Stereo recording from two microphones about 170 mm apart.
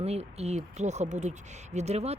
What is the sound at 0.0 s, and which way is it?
Speech, 40° right (ahead or behind).